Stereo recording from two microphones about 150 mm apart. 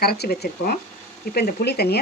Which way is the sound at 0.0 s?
90° left.